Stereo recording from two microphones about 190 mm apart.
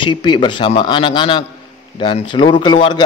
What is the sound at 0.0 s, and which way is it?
A man's voice, 25° left (ahead or behind).